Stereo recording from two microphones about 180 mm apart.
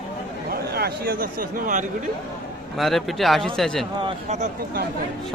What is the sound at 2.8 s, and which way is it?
Speech, centre (ahead or behind).